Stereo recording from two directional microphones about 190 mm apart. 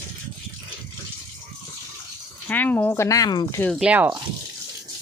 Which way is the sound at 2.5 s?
10° left (ahead or behind).